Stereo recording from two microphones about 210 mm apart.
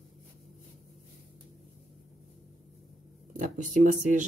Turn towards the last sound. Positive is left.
turn(degrees=-40)  # may be behind; listen again after turning